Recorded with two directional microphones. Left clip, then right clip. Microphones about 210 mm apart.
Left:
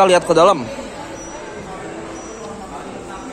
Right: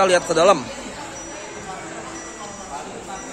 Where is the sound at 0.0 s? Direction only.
15° left (ahead or behind).